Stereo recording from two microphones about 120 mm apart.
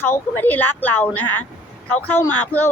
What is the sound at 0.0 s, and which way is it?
A woman's voice, 15° left (ahead or behind).